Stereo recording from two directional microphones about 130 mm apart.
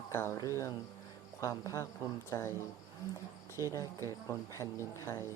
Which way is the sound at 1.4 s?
25° left (ahead or behind).